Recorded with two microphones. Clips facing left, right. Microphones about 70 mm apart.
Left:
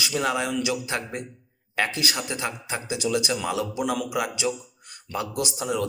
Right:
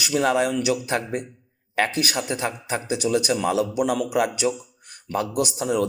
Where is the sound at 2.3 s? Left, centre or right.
Right.